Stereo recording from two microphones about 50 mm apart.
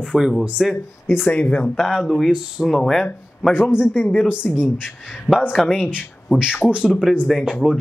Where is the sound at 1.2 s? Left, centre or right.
Left.